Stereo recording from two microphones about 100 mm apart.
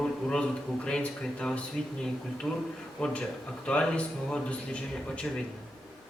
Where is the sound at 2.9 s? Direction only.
10° left (ahead or behind).